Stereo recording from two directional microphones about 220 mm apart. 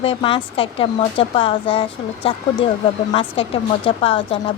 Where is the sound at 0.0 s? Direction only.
25° left (ahead or behind).